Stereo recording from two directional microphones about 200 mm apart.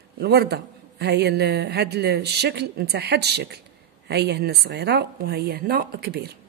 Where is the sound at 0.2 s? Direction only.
50° right (ahead or behind).